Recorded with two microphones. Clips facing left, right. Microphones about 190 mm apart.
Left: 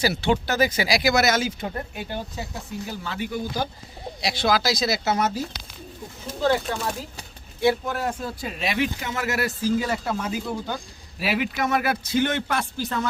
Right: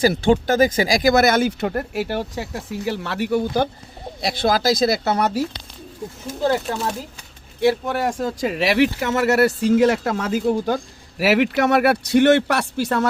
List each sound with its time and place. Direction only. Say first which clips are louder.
0.0 s speech: right 6 dB; 50° right (ahead or behind)
4.2 s speech: right 3 dB; 50° right (ahead or behind)
7.9 s speech: right 5 dB; 75° right (ahead or behind)
11.2 s speech: right 8 dB; 75° right (ahead or behind)